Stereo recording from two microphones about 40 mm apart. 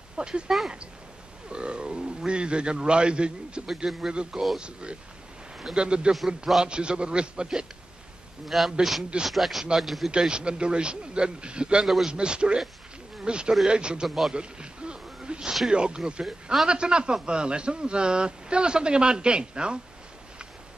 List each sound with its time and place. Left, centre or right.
0.2 s speech: right
1.5 s speech: right
3.6 s a man's voice: centre
4.1 s speech: right
8.5 s speech: centre
10.1 s speech: right
11.8 s a man's voice: centre
12.1 s speech: right
14.0 s speech: centre
14.3 s a sound: right
15.7 s speech: right